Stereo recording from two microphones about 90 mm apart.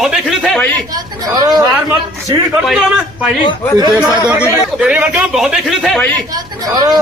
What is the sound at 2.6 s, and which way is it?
Speech, centre (ahead or behind).